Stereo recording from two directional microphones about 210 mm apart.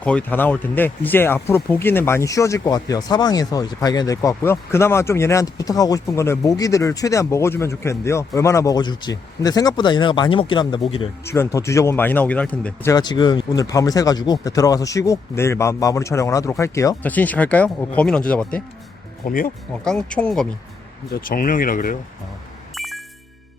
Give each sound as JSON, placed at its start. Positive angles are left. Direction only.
{"t": 0.0, "sound": "speech", "side_deg": 5}
{"t": 19.2, "sound": "speech", "side_deg": 40}
{"t": 19.8, "sound": "speech", "side_deg": 5}
{"t": 21.1, "sound": "speech", "side_deg": 45}
{"t": 22.7, "sound": "music", "side_deg": 0}